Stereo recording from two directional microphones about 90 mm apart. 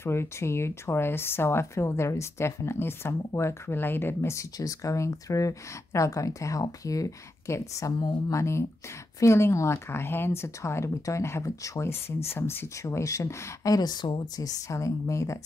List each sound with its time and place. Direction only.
0.0 s speech: 30° left (ahead or behind)